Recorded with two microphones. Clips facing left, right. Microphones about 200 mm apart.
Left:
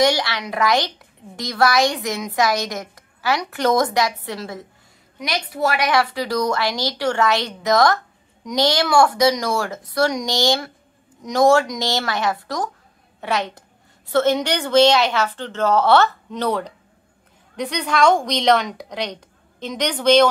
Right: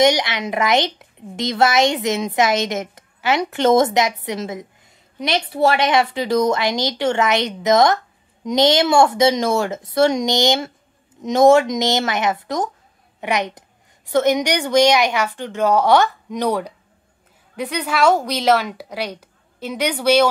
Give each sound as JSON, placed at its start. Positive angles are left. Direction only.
{"t": 0.0, "sound": "a woman's voice", "side_deg": -20}